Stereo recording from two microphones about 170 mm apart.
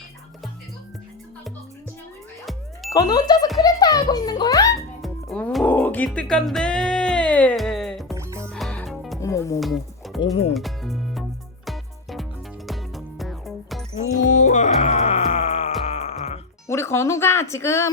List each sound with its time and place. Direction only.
2.9 s a child's voice: 20° left (ahead or behind)
5.0 s music: 5° left (ahead or behind)
8.1 s music: 15° right (ahead or behind)
8.4 s music: 5° left (ahead or behind)
9.2 s speech: 20° left (ahead or behind)
9.6 s music: centre (ahead or behind)
14.0 s music: 45° left (ahead or behind)
16.6 s speech: 15° left (ahead or behind)